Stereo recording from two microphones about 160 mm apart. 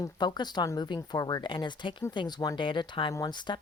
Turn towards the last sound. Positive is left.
turn(degrees=25)  # may be behind; listen again after turning